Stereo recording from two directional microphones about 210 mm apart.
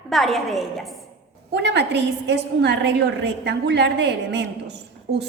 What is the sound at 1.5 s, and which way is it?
A woman's voice, 55° right (ahead or behind).